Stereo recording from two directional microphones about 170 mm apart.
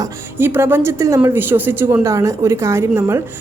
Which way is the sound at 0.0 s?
15° right (ahead or behind).